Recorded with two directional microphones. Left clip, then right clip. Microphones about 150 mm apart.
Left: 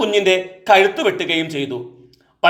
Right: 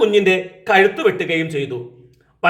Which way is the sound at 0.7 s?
40° left (ahead or behind).